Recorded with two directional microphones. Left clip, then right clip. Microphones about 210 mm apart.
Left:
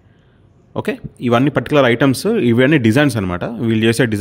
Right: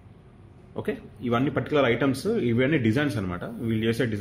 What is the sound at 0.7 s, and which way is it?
Speech, 50° left (ahead or behind).